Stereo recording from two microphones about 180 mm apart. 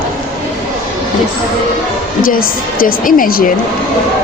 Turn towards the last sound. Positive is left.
turn(degrees=50)  # may be behind; listen again after turning